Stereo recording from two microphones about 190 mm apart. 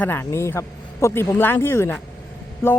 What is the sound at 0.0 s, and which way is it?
Speech, 10° left (ahead or behind).